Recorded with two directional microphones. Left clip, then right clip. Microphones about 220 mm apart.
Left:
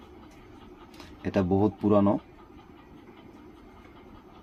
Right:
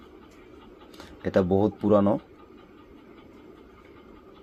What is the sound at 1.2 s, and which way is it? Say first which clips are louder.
Speech: right 3 dB; 10° right (ahead or behind).